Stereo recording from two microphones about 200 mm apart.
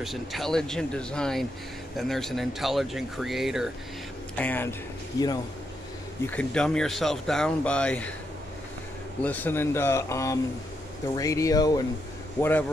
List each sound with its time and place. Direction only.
0.0 s speech: centre (ahead or behind)
4.4 s speech: 10° left (ahead or behind)
6.2 s speech: 5° left (ahead or behind)
9.2 s speech: 10° left (ahead or behind)